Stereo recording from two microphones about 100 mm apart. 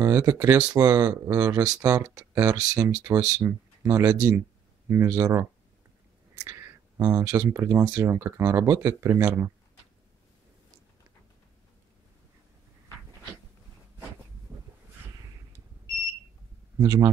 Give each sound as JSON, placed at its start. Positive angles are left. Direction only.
{"t": 0.0, "sound": "speech", "side_deg": -35}
{"t": 6.4, "sound": "a sound", "side_deg": -30}
{"t": 7.7, "sound": "speech", "side_deg": -30}
{"t": 16.7, "sound": "speech", "side_deg": -30}